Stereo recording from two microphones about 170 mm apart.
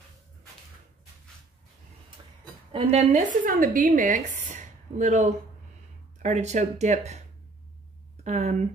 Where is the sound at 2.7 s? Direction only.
35° right (ahead or behind).